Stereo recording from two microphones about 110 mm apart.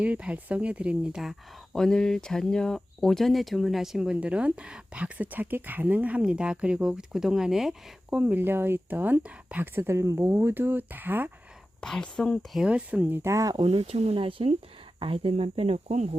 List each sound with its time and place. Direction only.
0.0 s speech: 10° right (ahead or behind)
8.2 s speech: 15° right (ahead or behind)
11.8 s speech: 5° left (ahead or behind)
12.6 s speech: 10° right (ahead or behind); by 13.6 s 30° right (ahead or behind)
13.6 s speech: 60° right (ahead or behind); by 16.0 s 80° right